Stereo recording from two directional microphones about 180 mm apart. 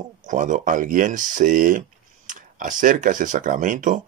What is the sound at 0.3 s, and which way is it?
Speech, 45° right (ahead or behind).